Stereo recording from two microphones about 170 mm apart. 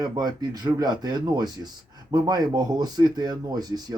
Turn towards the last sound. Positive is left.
turn(degrees=-25)  # may be behind; listen again after turning